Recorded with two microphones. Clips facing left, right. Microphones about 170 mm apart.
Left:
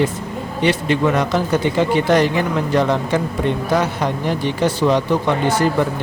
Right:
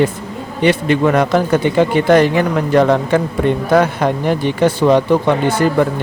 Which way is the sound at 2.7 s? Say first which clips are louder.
Right 6 dB; 55° right (ahead or behind).